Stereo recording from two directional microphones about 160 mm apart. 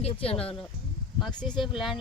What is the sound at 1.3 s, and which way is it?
Speech, 25° left (ahead or behind).